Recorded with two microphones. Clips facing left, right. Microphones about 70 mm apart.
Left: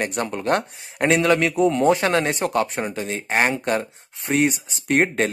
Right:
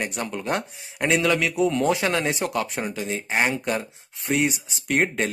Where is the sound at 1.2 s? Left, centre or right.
Left.